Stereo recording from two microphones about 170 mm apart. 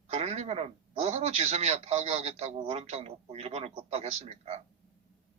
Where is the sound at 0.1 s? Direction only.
40° right (ahead or behind).